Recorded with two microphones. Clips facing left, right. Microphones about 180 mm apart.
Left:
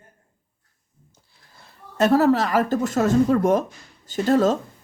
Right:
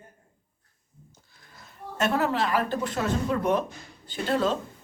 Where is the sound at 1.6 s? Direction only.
35° left (ahead or behind).